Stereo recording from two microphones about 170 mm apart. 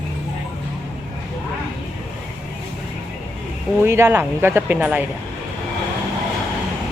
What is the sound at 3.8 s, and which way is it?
Speech, 15° right (ahead or behind).